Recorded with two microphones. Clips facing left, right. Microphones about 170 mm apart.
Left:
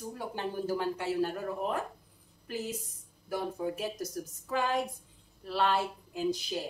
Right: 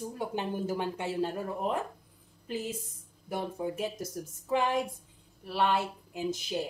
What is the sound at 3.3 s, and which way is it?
Speech, 25° right (ahead or behind).